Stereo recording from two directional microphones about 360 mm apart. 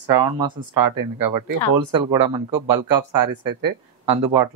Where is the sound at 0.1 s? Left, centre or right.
Right.